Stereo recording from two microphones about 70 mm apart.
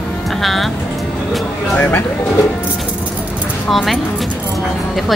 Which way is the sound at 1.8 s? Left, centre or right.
Left.